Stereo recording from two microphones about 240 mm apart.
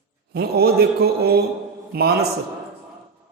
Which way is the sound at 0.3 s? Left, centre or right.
Right.